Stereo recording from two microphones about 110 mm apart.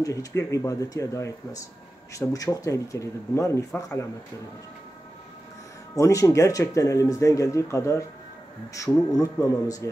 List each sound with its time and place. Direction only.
0.0 s speech: 30° left (ahead or behind)
5.9 s speech: 30° left (ahead or behind)